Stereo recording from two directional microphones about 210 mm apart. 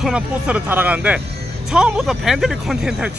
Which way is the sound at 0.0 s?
5° right (ahead or behind).